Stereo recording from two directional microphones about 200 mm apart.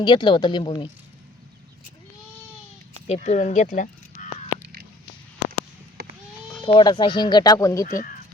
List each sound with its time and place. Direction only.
0.0 s speech: 25° left (ahead or behind)
3.1 s speech: 35° left (ahead or behind)
6.6 s speech: 25° left (ahead or behind)
7.9 s speech: 45° left (ahead or behind)